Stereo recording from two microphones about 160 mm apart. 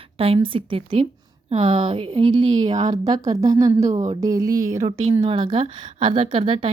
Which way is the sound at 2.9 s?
25° right (ahead or behind).